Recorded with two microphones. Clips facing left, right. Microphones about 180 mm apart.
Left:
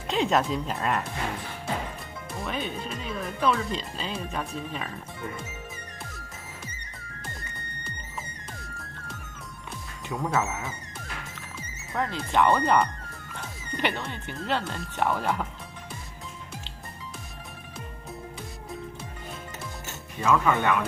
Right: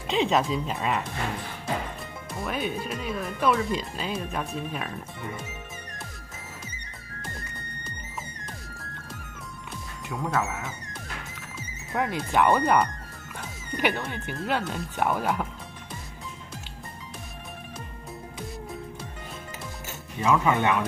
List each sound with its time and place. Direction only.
0.1 s speech: centre (ahead or behind)
2.4 s speech: 10° right (ahead or behind)
12.0 s speech: 10° right (ahead or behind)
20.2 s speech: 20° right (ahead or behind)